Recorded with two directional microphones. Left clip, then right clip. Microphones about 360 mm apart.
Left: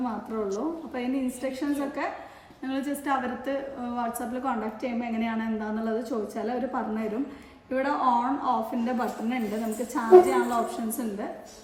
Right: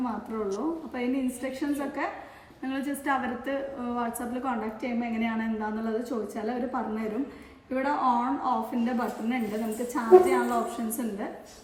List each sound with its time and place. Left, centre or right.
0.0 s a woman's voice: centre